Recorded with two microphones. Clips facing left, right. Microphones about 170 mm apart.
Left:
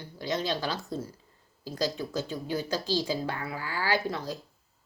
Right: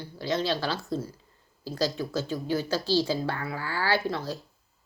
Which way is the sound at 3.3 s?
15° left (ahead or behind).